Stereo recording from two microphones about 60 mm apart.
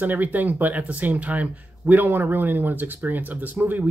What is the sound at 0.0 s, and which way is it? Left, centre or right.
Speech, right.